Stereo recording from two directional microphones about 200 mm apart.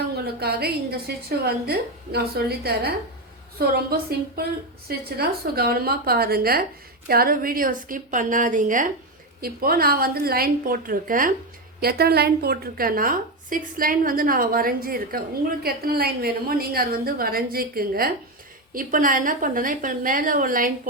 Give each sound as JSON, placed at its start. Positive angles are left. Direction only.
{"t": 0.3, "sound": "a woman's voice", "side_deg": -50}
{"t": 4.9, "sound": "a woman's voice", "side_deg": -50}